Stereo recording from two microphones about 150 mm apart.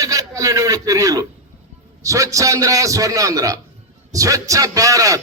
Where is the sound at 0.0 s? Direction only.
20° right (ahead or behind).